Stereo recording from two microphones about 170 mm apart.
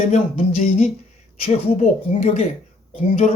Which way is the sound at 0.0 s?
45° left (ahead or behind).